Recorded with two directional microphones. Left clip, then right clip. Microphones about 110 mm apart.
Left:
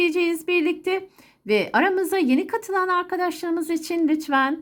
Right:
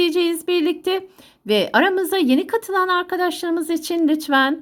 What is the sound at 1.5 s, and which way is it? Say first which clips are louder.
A woman's voice: right 3 dB; 15° right (ahead or behind).